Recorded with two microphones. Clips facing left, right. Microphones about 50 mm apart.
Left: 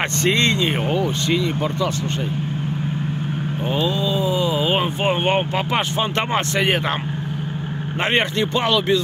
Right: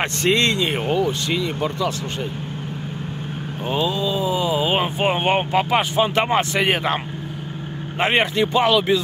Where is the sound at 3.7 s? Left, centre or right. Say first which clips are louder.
Even; centre.